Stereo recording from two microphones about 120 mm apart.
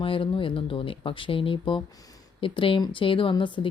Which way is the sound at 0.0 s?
45° left (ahead or behind).